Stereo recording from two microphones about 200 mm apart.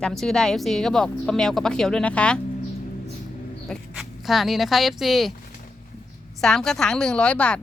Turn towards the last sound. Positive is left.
turn(degrees=5)  # may be behind; listen again after turning